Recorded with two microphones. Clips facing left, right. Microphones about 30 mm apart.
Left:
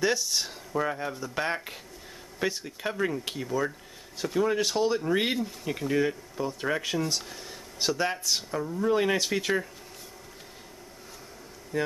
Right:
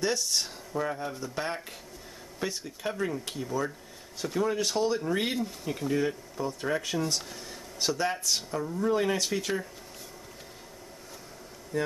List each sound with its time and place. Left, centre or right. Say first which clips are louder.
0.0 s speech: left 2 dB; centre
0.7 s speech: left 2 dB; centre
7.0 s speech: left 1 dB; centre
8.8 s speech: left 2 dB; centre
11.7 s speech: left 1 dB; centre